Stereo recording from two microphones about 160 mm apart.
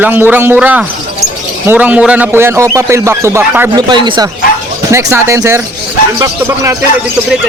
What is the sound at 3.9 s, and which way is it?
Speech, 30° right (ahead or behind).